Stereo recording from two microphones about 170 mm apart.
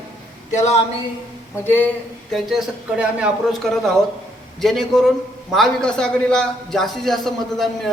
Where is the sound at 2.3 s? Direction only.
Centre (ahead or behind).